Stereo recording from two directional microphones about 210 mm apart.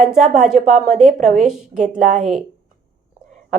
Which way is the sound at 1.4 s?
5° right (ahead or behind).